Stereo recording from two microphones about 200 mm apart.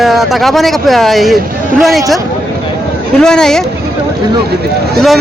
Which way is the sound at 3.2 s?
5° left (ahead or behind).